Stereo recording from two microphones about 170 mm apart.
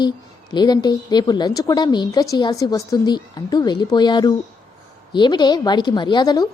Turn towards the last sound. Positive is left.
turn(degrees=25)  # may be behind; listen again after turning